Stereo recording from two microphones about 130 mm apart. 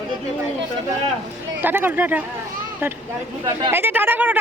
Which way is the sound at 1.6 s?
15° right (ahead or behind).